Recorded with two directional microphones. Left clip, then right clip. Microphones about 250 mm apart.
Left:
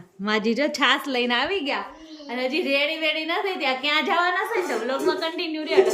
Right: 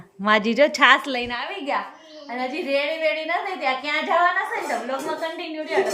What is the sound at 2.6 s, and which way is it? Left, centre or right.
A woman's voice, centre.